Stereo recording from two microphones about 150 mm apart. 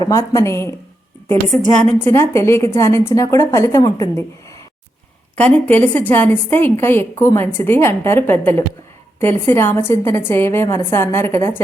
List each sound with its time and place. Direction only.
0.0 s a woman's voice: 20° left (ahead or behind)
1.8 s a woman's voice: 15° left (ahead or behind)
5.4 s a woman's voice: 10° left (ahead or behind)